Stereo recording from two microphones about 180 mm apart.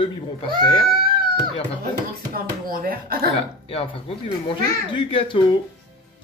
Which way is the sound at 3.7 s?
30° left (ahead or behind).